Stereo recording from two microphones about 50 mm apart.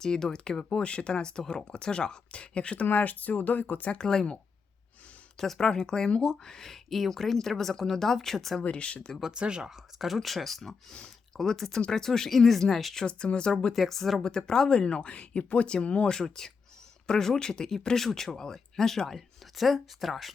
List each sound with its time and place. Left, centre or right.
0.0 s speech: centre
2.8 s speech: left
3.9 s speech: centre
5.4 s speech: centre
8.6 s speech: left
9.3 s speech: centre
13.7 s speech: centre